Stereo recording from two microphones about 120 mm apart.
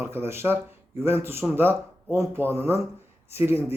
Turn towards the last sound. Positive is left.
turn(degrees=-20)  # may be behind; listen again after turning